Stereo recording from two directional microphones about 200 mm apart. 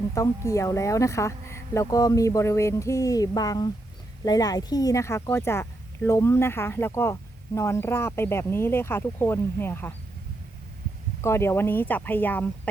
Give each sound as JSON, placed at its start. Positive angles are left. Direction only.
{"t": 0.1, "sound": "speech", "side_deg": 15}
{"t": 11.2, "sound": "speech", "side_deg": 15}